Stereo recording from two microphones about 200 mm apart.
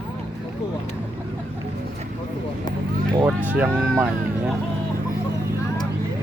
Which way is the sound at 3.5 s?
5° right (ahead or behind).